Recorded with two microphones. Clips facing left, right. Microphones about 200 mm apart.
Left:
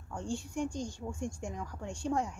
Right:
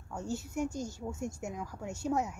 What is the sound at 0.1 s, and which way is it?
A woman's voice, 5° right (ahead or behind).